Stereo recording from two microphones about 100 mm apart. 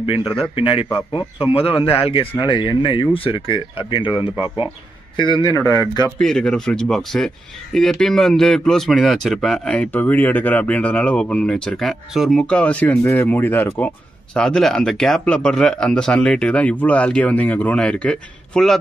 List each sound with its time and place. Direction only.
0.6 s a man's voice: 60° left (ahead or behind)
2.3 s speech: 55° left (ahead or behind)
4.1 s speech: 20° right (ahead or behind)
5.1 s a man's voice: 50° left (ahead or behind)
5.7 s speech: 35° left (ahead or behind)
6.2 s speech: 5° left (ahead or behind)
12.9 s speech: 25° left (ahead or behind); by 18.8 s 5° left (ahead or behind)